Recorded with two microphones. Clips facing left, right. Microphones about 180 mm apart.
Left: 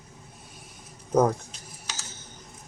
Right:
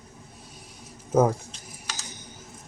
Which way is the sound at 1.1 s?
5° right (ahead or behind).